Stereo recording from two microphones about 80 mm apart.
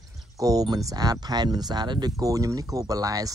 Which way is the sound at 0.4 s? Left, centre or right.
Right.